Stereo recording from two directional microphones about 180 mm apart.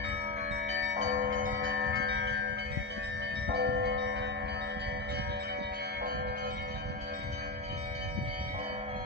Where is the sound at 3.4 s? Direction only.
65° right (ahead or behind).